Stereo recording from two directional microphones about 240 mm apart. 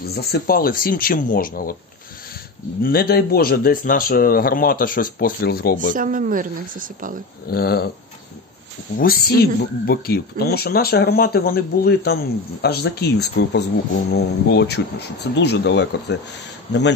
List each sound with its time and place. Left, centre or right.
0.0 s speech: left
2.8 s speech: left
5.9 s a woman's voice: right
7.4 s speech: left
8.9 s speech: left